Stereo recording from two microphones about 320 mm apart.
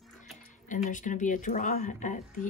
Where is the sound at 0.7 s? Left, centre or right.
Left.